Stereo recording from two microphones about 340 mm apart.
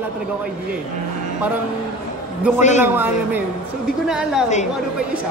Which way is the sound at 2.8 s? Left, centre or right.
Centre.